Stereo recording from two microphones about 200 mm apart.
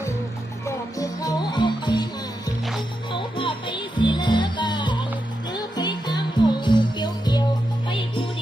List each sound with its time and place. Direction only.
0.6 s music: 15° left (ahead or behind)
3.1 s music: 25° left (ahead or behind)